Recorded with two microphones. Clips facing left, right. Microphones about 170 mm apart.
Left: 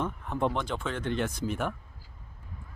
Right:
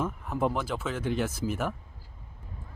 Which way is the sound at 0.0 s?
5° right (ahead or behind).